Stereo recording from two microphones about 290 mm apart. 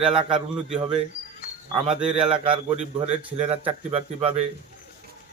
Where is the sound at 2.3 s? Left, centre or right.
Centre.